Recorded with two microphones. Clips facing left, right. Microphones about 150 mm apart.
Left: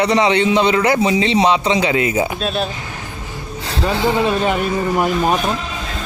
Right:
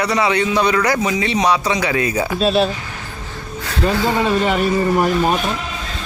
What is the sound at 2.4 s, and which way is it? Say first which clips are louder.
Speech: right 5 dB; centre (ahead or behind).